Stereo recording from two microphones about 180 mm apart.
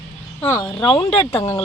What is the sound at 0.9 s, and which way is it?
Speech, 30° left (ahead or behind).